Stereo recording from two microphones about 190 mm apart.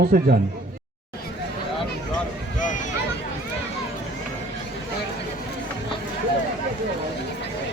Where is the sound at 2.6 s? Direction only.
40° left (ahead or behind).